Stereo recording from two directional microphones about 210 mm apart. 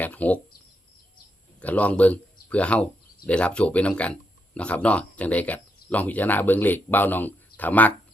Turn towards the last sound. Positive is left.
turn(degrees=10)  # may be behind; listen again after turning